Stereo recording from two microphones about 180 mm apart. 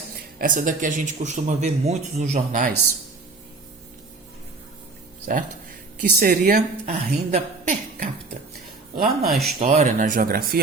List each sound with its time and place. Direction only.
0.3 s speech: 50° right (ahead or behind)
5.3 s speech: 50° right (ahead or behind)
9.2 s speech: centre (ahead or behind)
9.6 s speech: 45° right (ahead or behind)